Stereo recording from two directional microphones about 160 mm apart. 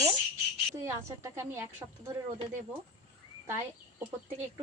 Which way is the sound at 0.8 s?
20° right (ahead or behind).